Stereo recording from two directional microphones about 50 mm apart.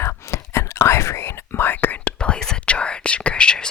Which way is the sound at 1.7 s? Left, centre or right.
Left.